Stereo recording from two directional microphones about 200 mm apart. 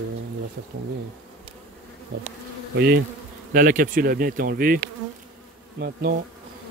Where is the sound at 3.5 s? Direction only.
45° right (ahead or behind).